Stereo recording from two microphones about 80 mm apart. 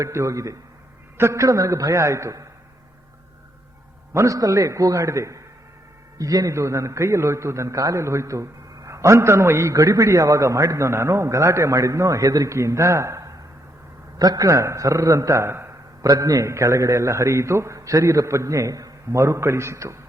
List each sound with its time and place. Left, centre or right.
0.0 s a man's voice: right
4.1 s a man's voice: right